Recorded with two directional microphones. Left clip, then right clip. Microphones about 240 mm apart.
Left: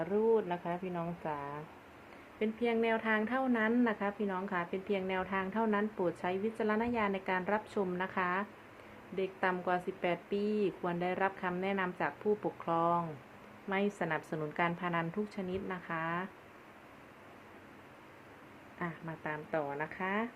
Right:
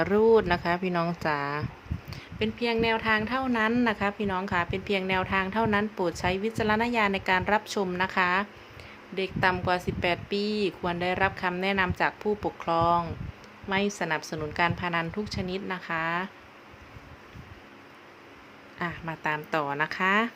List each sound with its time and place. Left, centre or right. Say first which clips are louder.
0.0 s speech: right 9 dB; right
2.4 s a woman's voice: right 6 dB; centre
14.3 s a woman's voice: right 7 dB; centre
18.8 s speech: right 9 dB; right